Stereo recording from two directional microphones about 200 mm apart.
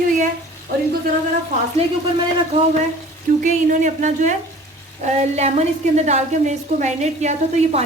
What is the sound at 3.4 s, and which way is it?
A woman's voice, 40° right (ahead or behind).